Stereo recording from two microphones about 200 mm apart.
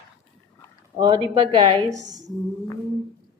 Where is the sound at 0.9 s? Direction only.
25° right (ahead or behind).